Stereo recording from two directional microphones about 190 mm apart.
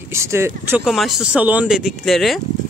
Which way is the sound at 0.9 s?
Centre (ahead or behind).